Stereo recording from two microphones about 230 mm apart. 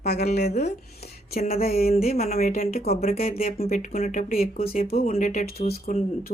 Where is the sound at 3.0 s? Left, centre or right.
Left.